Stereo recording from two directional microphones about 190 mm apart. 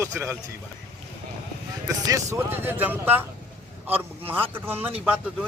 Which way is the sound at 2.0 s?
15° right (ahead or behind).